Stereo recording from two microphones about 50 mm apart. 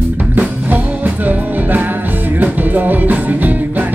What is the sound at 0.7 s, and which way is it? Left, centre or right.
Music, right.